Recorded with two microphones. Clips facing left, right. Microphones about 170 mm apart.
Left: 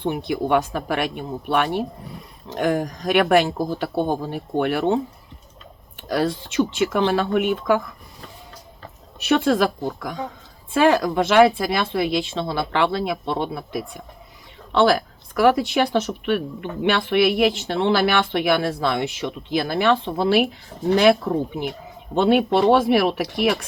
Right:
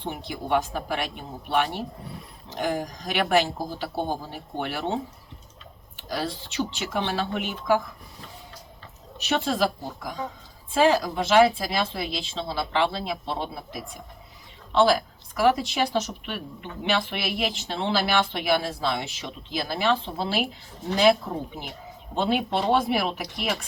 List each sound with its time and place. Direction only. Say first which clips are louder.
0.0 s speech: left 10 dB; 65° left (ahead or behind)
6.0 s speech: left 8 dB; 55° left (ahead or behind)
9.2 s speech: left 6 dB; 55° left (ahead or behind)